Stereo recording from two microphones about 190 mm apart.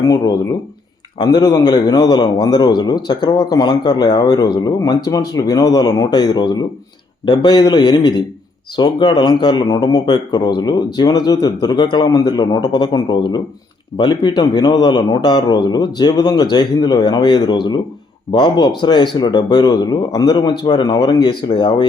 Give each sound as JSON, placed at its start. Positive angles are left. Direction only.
{"t": 1.4, "sound": "a man's voice", "side_deg": 20}